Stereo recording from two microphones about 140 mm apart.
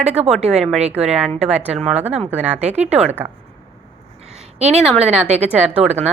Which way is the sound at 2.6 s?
50° right (ahead or behind).